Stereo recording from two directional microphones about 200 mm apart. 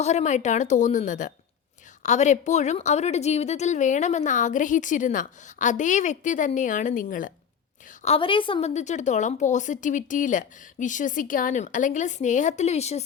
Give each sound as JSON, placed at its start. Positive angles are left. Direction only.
{"t": 0.0, "sound": "a woman's voice", "side_deg": 35}
{"t": 8.0, "sound": "a woman's voice", "side_deg": 25}